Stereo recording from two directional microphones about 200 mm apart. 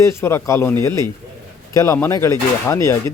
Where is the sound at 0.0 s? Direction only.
15° left (ahead or behind).